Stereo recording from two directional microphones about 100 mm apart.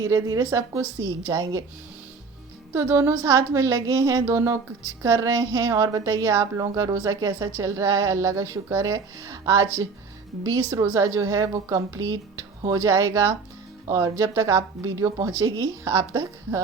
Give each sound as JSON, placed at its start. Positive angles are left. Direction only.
{"t": 0.0, "sound": "a woman's voice", "side_deg": -35}
{"t": 2.7, "sound": "a woman's voice", "side_deg": -30}
{"t": 10.8, "sound": "a woman's voice", "side_deg": -30}
{"t": 14.8, "sound": "speech", "side_deg": 0}
{"t": 15.4, "sound": "a woman's voice", "side_deg": -40}
{"t": 15.9, "sound": "a woman's voice", "side_deg": -30}